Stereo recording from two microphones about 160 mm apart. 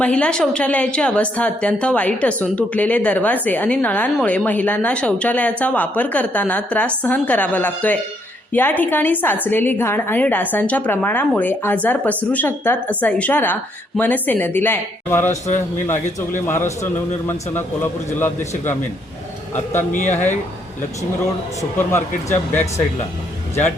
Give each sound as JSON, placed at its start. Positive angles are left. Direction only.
{"t": 0.0, "sound": "a woman's voice", "side_deg": 5}
{"t": 15.3, "sound": "a man's voice", "side_deg": 45}
{"t": 16.5, "sound": "a woman's voice", "side_deg": 15}
{"t": 19.9, "sound": "a man's voice", "side_deg": 50}
{"t": 21.6, "sound": "a woman's voice", "side_deg": 15}